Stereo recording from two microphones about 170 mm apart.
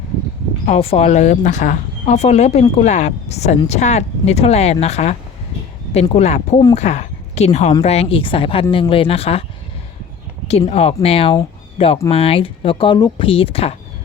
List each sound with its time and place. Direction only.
0.6 s speech: 40° left (ahead or behind)
10.7 s speech: 35° left (ahead or behind)